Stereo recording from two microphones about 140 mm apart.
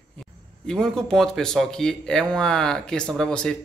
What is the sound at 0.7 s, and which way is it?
Speech, 5° left (ahead or behind).